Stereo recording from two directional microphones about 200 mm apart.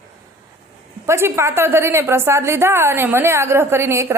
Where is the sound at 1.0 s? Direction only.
15° right (ahead or behind).